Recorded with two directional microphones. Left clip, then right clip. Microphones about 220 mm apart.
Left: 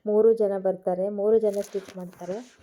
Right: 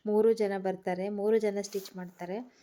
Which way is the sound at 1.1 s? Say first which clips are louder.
Left 6 dB; 35° right (ahead or behind).